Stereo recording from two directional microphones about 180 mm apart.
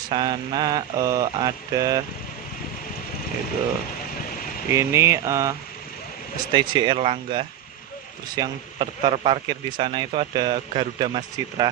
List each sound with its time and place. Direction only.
0.1 s speech: 25° right (ahead or behind)
4.6 s speech: 15° right (ahead or behind)